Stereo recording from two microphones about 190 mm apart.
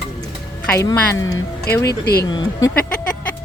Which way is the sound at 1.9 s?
55° left (ahead or behind).